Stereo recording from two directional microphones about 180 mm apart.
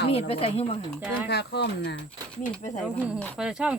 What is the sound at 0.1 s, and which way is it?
Speech, 35° left (ahead or behind).